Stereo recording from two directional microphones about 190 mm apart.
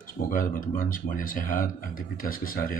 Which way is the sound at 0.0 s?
45° left (ahead or behind).